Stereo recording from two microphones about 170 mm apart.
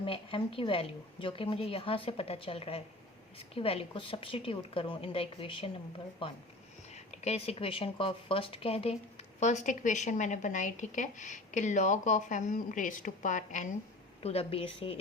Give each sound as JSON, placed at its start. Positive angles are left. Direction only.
{"t": 0.0, "sound": "a woman's voice", "side_deg": 30}
{"t": 14.2, "sound": "a woman's voice", "side_deg": 35}